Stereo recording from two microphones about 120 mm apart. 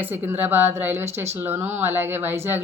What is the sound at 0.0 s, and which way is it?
A woman's voice, 15° right (ahead or behind).